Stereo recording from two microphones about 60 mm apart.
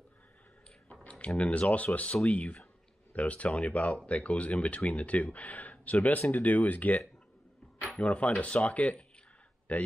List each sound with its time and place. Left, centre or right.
1.0 s speech: left
7.9 s speech: centre